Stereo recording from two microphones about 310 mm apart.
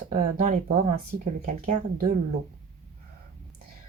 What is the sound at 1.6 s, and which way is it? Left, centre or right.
Speech, right.